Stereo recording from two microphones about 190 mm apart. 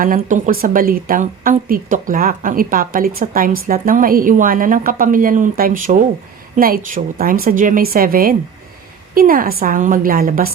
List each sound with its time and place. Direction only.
0.2 s speech: 40° right (ahead or behind)